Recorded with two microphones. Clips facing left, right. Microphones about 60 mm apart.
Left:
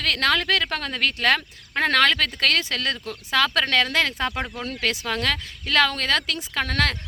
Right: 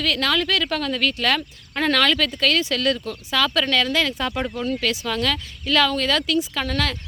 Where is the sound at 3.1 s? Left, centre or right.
Left.